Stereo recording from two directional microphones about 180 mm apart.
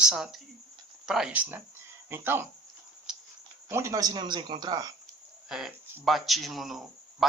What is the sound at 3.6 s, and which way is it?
Speech, 15° right (ahead or behind).